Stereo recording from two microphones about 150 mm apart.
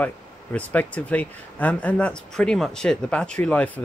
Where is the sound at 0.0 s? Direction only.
10° left (ahead or behind).